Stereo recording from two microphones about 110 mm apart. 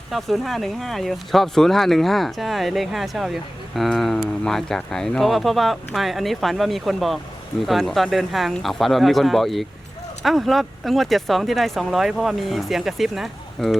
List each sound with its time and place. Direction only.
0.1 s speech: centre (ahead or behind)